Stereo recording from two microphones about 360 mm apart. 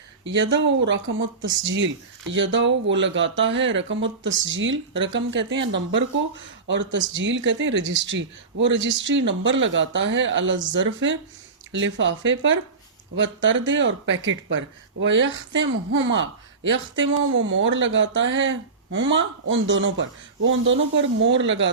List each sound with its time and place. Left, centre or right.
0.3 s speech: right